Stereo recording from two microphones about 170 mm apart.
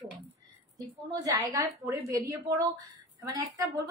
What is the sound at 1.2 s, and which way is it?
A woman's voice, 20° right (ahead or behind).